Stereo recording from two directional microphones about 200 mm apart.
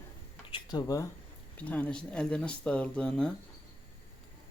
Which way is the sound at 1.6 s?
5° left (ahead or behind).